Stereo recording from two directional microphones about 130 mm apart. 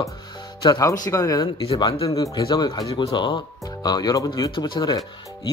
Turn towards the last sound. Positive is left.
turn(degrees=30)  # may be behind; listen again after turning